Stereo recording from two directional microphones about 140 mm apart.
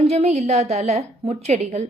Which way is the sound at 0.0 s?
50° right (ahead or behind).